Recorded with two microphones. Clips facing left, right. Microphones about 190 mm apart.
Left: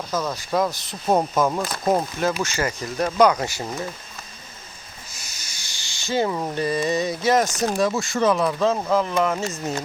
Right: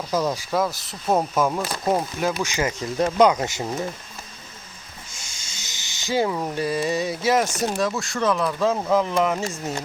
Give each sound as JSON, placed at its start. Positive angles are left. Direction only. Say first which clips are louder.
{"t": 0.1, "sound": "speech", "louder": "right 2 dB", "side_deg": -10}
{"t": 2.4, "sound": "speech", "louder": "even", "side_deg": -15}
{"t": 5.1, "sound": "snake", "louder": "even", "side_deg": -25}
{"t": 6.2, "sound": "speech", "louder": "left 1 dB", "side_deg": 0}
{"t": 8.9, "sound": "speech", "louder": "even", "side_deg": -15}